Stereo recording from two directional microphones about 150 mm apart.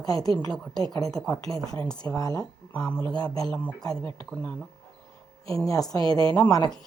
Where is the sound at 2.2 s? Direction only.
25° left (ahead or behind).